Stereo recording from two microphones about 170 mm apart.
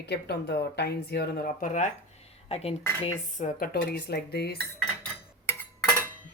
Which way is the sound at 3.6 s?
60° left (ahead or behind).